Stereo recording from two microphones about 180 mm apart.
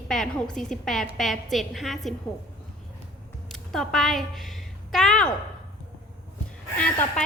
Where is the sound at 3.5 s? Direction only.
Centre (ahead or behind).